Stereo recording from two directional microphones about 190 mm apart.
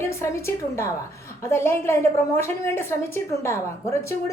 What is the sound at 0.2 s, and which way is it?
A woman's voice, 15° left (ahead or behind).